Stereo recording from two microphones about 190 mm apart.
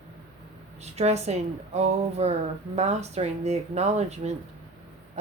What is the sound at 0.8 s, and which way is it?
Speech, 35° right (ahead or behind).